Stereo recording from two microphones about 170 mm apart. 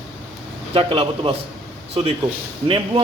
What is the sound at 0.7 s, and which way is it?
Speech, 35° right (ahead or behind).